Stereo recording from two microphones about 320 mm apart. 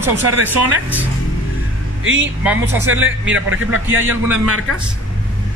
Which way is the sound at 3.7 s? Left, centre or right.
Centre.